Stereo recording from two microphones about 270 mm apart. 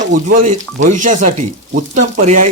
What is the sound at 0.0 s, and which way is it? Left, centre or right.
Speech, right.